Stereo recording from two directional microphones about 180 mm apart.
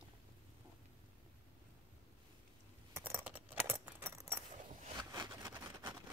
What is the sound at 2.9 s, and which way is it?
Keys jangling, 10° right (ahead or behind).